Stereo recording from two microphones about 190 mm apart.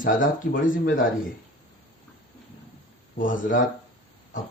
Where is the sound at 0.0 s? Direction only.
45° left (ahead or behind).